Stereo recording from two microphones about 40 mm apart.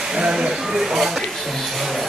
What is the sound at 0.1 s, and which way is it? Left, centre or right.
Speech, centre.